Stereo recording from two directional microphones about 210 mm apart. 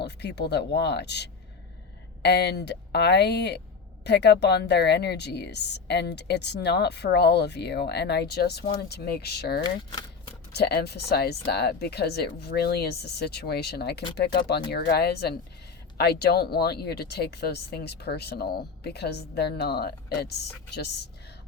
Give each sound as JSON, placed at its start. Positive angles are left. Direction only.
{"t": 0.0, "sound": "speech", "side_deg": 55}
{"t": 9.6, "sound": "speech", "side_deg": 20}
{"t": 10.5, "sound": "speech", "side_deg": 50}